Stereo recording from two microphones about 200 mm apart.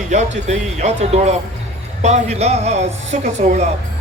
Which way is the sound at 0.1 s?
35° right (ahead or behind).